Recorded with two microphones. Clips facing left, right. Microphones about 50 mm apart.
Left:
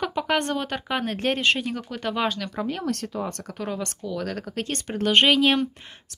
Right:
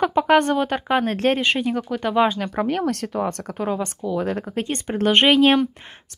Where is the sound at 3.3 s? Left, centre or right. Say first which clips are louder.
Right 6 dB; right.